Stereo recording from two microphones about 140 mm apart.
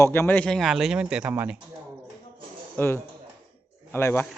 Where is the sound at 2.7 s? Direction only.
15° left (ahead or behind).